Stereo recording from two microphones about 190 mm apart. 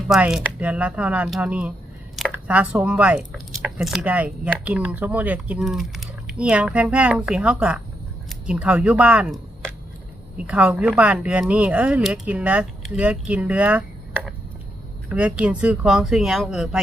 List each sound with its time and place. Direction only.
0.1 s speech: 5° right (ahead or behind)